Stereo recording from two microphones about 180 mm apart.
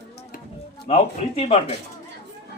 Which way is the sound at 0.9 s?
35° left (ahead or behind).